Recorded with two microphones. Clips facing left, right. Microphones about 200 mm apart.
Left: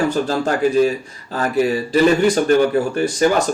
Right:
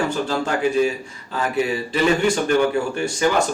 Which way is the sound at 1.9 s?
40° left (ahead or behind).